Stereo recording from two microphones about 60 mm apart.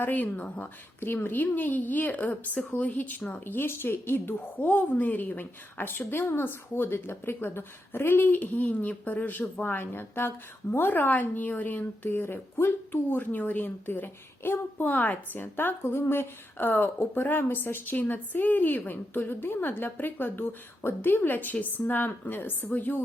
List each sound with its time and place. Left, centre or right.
0.0 s a woman's voice: left